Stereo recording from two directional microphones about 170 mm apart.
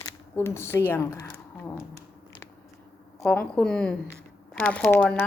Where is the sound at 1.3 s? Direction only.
15° left (ahead or behind).